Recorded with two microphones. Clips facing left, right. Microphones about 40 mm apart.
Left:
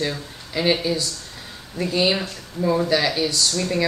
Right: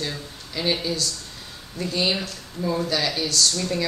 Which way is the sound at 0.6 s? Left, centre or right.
Centre.